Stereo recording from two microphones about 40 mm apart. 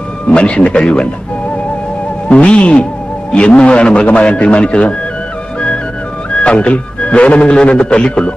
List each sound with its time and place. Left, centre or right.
0.3 s a man's voice: left
2.2 s a man's voice: left
6.4 s a man's voice: left